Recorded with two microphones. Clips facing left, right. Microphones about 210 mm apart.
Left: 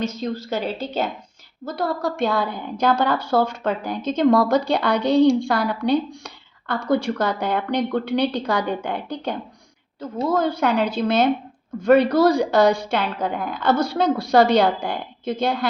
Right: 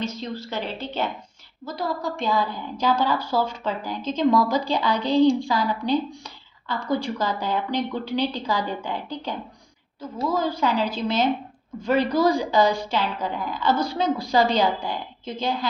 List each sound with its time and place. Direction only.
0.0 s a woman's voice: 45° left (ahead or behind)
1.6 s a woman's voice: 65° left (ahead or behind)
10.3 s a woman's voice: 65° left (ahead or behind)